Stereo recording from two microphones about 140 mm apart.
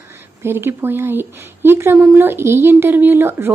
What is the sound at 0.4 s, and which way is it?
Speech, 15° right (ahead or behind).